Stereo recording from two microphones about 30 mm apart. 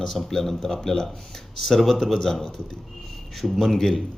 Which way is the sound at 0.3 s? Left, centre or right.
Centre.